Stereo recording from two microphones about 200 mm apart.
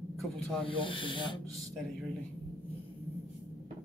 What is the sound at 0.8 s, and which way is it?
Speech, 25° left (ahead or behind).